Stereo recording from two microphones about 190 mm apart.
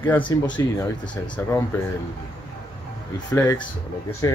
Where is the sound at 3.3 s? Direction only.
10° left (ahead or behind).